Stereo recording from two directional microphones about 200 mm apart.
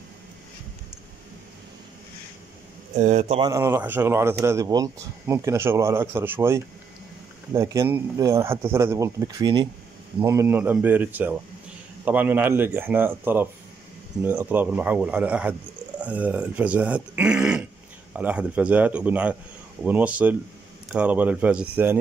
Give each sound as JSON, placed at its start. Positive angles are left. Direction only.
{"t": 3.0, "sound": "a man's voice", "side_deg": -35}
{"t": 3.3, "sound": "speech", "side_deg": -15}